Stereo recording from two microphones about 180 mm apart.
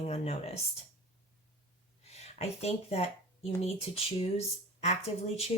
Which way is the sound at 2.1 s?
35° left (ahead or behind).